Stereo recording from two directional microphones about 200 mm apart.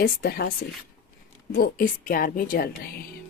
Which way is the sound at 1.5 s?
45° left (ahead or behind).